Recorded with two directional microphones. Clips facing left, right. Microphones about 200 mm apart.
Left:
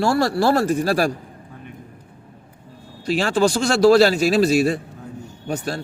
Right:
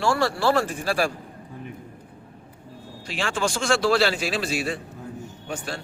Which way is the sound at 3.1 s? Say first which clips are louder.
Left 9 dB; 40° left (ahead or behind).